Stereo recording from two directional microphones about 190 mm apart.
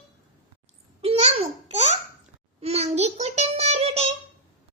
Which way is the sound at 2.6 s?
35° right (ahead or behind).